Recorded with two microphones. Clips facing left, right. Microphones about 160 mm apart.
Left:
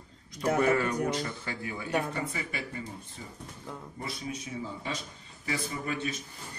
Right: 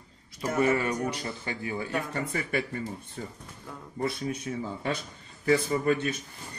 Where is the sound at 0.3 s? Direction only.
5° right (ahead or behind).